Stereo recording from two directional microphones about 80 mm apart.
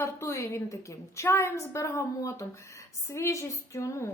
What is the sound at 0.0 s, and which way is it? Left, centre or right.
A woman's voice, left.